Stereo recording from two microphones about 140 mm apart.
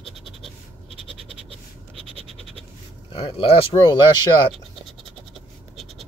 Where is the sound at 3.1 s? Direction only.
40° left (ahead or behind).